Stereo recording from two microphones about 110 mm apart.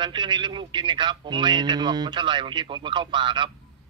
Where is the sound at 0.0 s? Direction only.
45° right (ahead or behind).